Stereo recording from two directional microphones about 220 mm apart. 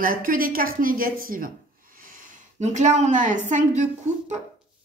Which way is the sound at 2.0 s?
35° right (ahead or behind).